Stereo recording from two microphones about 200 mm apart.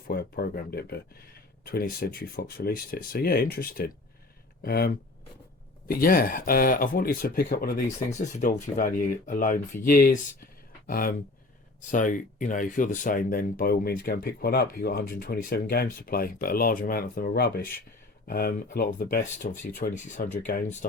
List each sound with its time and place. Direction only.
0.1 s speech: 50° left (ahead or behind)
5.9 s speech: 45° left (ahead or behind)
8.2 s speech: 40° left (ahead or behind)